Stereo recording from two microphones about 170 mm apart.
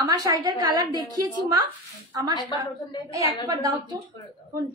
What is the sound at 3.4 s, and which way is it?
Speech, 25° right (ahead or behind).